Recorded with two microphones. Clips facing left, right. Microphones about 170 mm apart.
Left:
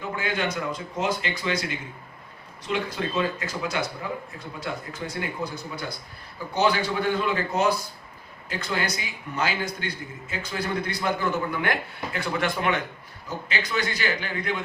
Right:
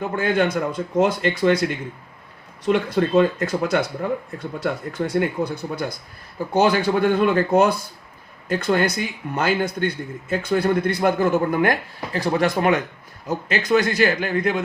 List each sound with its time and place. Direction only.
0.2 s speech: 55° right (ahead or behind)
2.6 s a man's voice: 55° right (ahead or behind)